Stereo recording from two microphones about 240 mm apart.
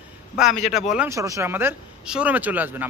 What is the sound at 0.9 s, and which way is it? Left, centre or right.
A man's voice, centre.